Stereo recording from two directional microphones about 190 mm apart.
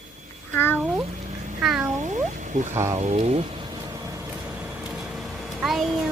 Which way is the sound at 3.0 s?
35° right (ahead or behind).